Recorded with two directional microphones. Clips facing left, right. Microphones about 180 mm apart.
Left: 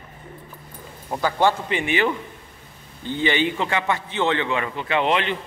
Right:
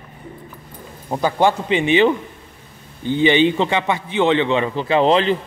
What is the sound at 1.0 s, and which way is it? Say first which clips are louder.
A man's voice: right 3 dB; 20° right (ahead or behind).